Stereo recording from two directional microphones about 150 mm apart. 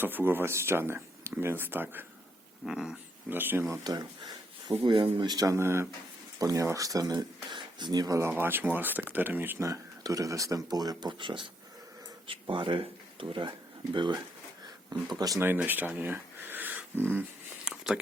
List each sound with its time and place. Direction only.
0.0 s speech: 15° right (ahead or behind)
3.8 s speech: 25° right (ahead or behind)
8.3 s speech: 15° right (ahead or behind); by 14.2 s 30° right (ahead or behind)
15.2 s speech: 20° right (ahead or behind)
17.7 s a sound: 5° right (ahead or behind)